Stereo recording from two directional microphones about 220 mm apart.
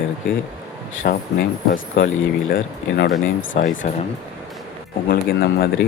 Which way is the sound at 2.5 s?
50° left (ahead or behind).